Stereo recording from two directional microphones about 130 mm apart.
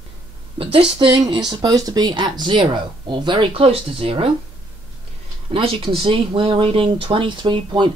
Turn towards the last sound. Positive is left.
turn(degrees=-40)  # may be behind; listen again after turning